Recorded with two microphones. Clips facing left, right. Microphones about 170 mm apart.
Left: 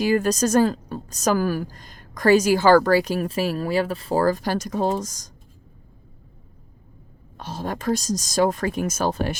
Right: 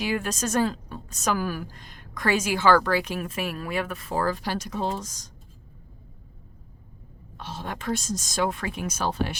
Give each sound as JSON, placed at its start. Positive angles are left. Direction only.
{"t": 0.0, "sound": "a woman's voice", "side_deg": 40}
{"t": 7.3, "sound": "a woman's voice", "side_deg": 40}